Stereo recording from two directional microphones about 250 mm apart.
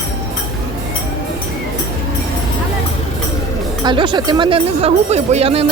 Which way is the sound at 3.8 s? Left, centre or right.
Centre.